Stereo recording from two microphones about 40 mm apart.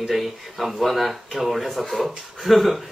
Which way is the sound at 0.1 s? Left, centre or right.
Centre.